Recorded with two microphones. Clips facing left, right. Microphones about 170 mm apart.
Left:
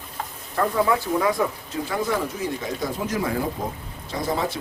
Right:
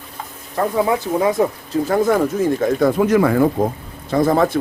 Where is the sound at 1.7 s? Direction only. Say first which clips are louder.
Right 9 dB; 45° right (ahead or behind); by 3.5 s 65° right (ahead or behind).